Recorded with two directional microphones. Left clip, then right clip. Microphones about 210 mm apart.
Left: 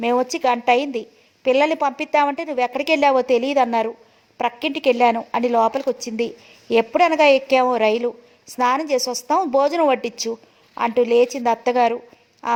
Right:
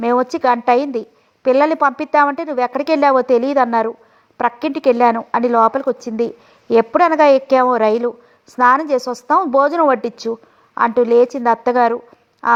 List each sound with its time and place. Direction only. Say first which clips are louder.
0.0 s a woman's voice: right 4 dB; 25° right (ahead or behind)